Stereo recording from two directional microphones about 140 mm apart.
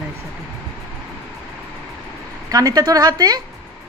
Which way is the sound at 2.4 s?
25° right (ahead or behind).